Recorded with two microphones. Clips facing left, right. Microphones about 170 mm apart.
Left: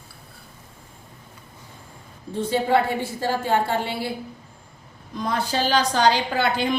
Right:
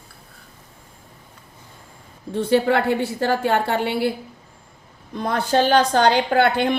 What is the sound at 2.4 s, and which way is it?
A woman's voice, 65° right (ahead or behind).